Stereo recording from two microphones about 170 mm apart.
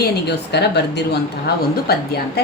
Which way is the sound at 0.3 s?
75° left (ahead or behind).